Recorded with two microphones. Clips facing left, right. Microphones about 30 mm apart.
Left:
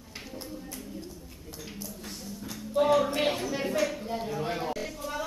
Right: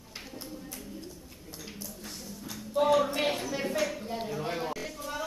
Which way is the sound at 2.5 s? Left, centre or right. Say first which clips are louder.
Left 1 dB; centre.